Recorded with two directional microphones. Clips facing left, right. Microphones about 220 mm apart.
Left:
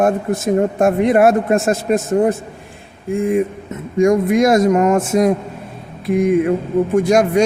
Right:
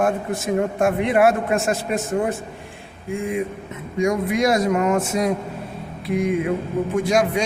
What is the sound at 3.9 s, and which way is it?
A man's voice, 50° left (ahead or behind).